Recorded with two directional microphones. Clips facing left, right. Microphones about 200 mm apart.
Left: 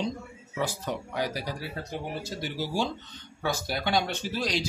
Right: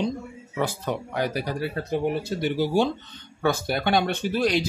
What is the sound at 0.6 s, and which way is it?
Speech, 55° right (ahead or behind).